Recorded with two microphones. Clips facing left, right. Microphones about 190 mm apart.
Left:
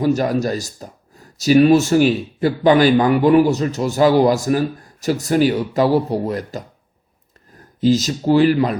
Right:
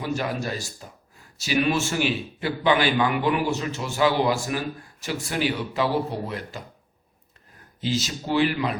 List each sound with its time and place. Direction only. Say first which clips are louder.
0.0 s speech: left 10 dB; 40° left (ahead or behind)
7.8 s speech: left 11 dB; 40° left (ahead or behind)